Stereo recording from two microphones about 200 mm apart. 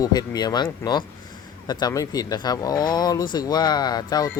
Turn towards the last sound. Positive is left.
turn(degrees=20)  # may be behind; listen again after turning